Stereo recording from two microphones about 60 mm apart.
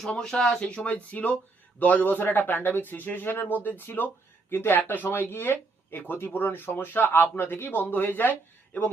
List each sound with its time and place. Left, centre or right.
0.2 s speech: centre
0.6 s speech: left